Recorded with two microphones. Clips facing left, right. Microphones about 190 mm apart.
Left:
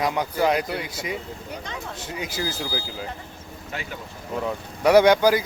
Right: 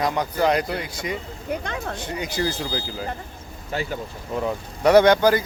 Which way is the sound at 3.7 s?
35° right (ahead or behind).